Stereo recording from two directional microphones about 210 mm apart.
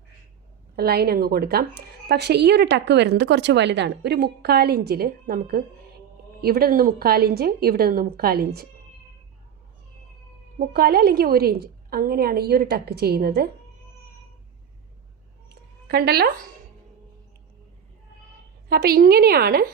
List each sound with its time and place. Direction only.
0.8 s a woman's voice: 50° right (ahead or behind)
10.6 s a woman's voice: 45° right (ahead or behind)
15.4 s a sound: 50° right (ahead or behind)
18.7 s a woman's voice: 45° right (ahead or behind)